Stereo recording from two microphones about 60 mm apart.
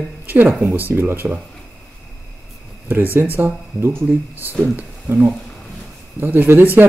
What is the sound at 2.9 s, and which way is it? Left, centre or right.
Speech, right.